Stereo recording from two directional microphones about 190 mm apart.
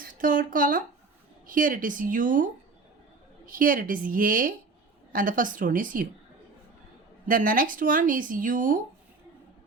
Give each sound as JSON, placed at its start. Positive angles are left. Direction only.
{"t": 0.0, "sound": "speech", "side_deg": -45}
{"t": 7.3, "sound": "speech", "side_deg": -45}